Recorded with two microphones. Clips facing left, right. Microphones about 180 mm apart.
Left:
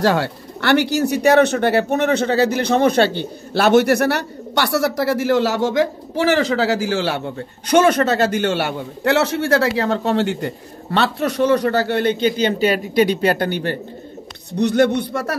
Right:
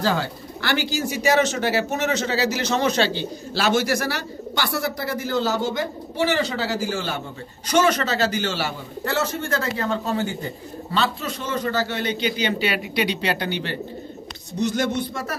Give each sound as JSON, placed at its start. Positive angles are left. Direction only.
{"t": 0.0, "sound": "speech", "side_deg": 70}
{"t": 14.5, "sound": "speech", "side_deg": 65}